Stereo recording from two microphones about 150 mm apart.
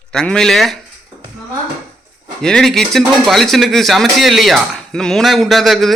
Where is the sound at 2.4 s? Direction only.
5° left (ahead or behind).